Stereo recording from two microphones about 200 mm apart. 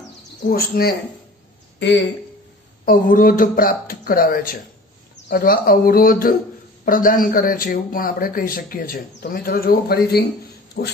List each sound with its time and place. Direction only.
0.5 s a man's voice: 50° left (ahead or behind)
1.8 s speech: 60° left (ahead or behind)
2.8 s a man's voice: 45° left (ahead or behind)
10.8 s a sound: 55° left (ahead or behind)